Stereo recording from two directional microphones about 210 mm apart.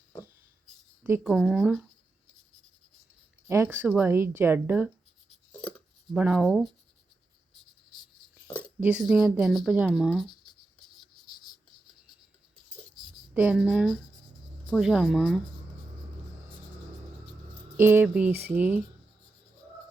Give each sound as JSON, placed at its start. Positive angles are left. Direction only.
{"t": 1.0, "sound": "speech", "side_deg": -5}
{"t": 3.4, "sound": "speech", "side_deg": -10}
{"t": 5.5, "sound": "chopping", "side_deg": 5}
{"t": 6.1, "sound": "speech", "side_deg": -5}
{"t": 8.8, "sound": "speech", "side_deg": -5}
{"t": 11.0, "sound": "writing", "side_deg": 20}
{"t": 13.3, "sound": "speech", "side_deg": -5}
{"t": 17.7, "sound": "speech", "side_deg": -10}